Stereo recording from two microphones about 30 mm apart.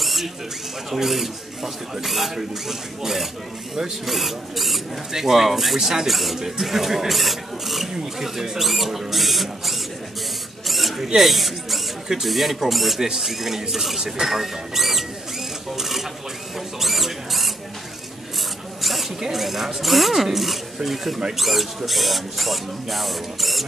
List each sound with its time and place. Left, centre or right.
0.0 s a sound: centre
0.9 s speech: centre
5.8 s speech: centre
6.0 s speech: centre
10.7 s mouse: centre
11.1 s speech: centre
15.8 s stir: centre
16.8 s speech: centre
18.8 s zipper: centre
19.2 s speech: centre